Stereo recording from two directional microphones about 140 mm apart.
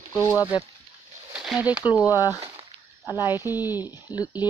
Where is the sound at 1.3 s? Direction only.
5° right (ahead or behind).